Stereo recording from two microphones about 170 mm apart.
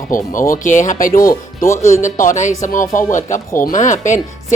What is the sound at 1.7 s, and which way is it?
Speech, 15° left (ahead or behind).